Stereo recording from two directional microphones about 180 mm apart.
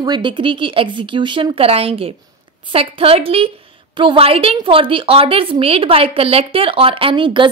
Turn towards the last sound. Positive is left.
turn(degrees=-30)  # may be behind; listen again after turning